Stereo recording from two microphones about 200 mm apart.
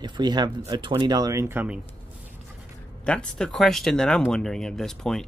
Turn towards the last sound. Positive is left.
turn(degrees=0)  # may be behind; listen again after turning